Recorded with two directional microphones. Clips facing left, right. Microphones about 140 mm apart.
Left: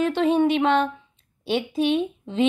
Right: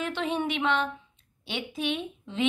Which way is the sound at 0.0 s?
40° left (ahead or behind).